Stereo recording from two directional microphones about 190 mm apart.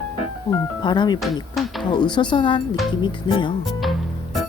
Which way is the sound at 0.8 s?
25° left (ahead or behind).